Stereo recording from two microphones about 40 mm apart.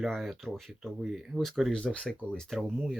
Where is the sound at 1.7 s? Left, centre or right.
Left.